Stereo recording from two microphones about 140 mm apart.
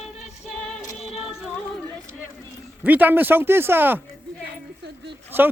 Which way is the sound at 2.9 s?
10° right (ahead or behind).